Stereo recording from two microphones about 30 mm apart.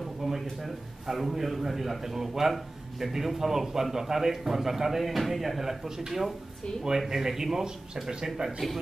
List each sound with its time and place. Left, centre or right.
0.4 s a sound: centre
1.0 s a man's voice: centre
5.6 s a man's voice: centre
7.9 s speech: right
8.5 s speech: centre